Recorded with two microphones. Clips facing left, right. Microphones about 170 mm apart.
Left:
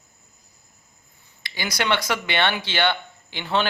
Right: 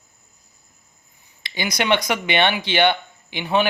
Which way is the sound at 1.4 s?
20° right (ahead or behind).